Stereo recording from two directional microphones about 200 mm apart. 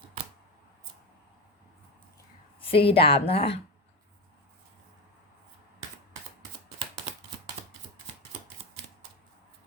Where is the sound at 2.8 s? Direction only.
25° left (ahead or behind).